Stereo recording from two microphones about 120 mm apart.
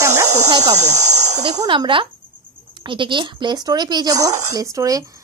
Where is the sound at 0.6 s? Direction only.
70° right (ahead or behind).